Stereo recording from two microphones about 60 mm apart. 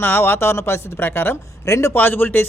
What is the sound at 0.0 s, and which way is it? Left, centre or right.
Speech, left.